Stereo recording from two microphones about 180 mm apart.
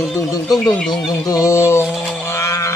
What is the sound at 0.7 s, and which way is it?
Speech, centre (ahead or behind).